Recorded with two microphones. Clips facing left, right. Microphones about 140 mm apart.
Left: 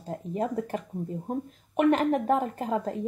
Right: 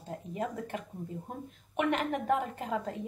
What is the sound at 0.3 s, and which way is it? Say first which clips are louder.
Speech: left 7 dB; 40° left (ahead or behind).